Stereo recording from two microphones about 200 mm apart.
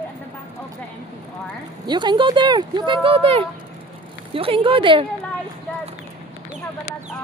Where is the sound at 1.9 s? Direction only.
20° right (ahead or behind).